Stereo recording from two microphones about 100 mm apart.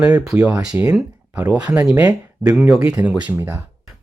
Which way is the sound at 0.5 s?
35° right (ahead or behind).